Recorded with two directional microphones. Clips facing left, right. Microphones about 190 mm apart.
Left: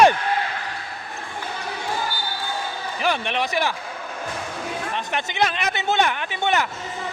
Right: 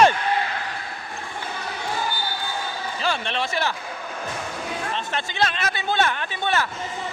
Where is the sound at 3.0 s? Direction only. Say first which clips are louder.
Left 3 dB; 15° left (ahead or behind).